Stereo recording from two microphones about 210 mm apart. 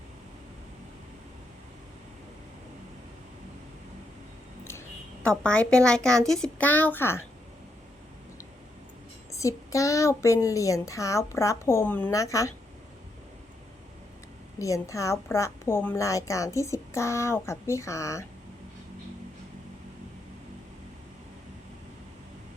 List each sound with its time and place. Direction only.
5.2 s speech: 5° left (ahead or behind)
9.3 s a woman's voice: 15° left (ahead or behind)
14.6 s a woman's voice: 15° left (ahead or behind)